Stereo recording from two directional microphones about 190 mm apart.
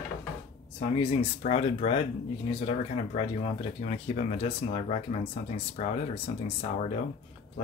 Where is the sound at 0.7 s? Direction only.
30° left (ahead or behind).